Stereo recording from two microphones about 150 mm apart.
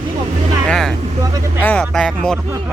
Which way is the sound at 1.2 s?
25° right (ahead or behind).